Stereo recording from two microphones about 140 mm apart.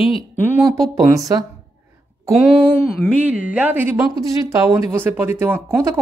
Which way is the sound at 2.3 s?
Centre (ahead or behind).